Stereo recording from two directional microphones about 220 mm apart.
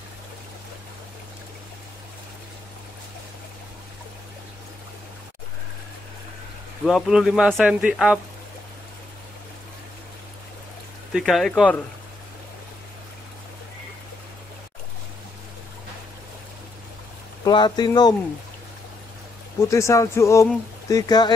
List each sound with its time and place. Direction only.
6.8 s speech: centre (ahead or behind)
11.1 s speech: centre (ahead or behind)
17.5 s speech: 20° left (ahead or behind)
19.6 s speech: 15° left (ahead or behind)